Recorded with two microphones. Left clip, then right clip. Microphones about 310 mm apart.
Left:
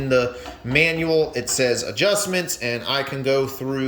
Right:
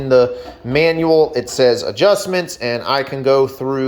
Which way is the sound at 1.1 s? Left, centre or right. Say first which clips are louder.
Right 7 dB; right.